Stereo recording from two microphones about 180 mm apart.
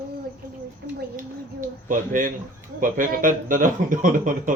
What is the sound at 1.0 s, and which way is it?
Speech, 50° right (ahead or behind).